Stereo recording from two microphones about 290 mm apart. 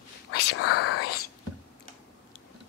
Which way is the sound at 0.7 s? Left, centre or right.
Left.